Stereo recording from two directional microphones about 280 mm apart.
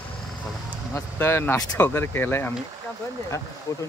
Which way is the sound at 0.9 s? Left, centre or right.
Centre.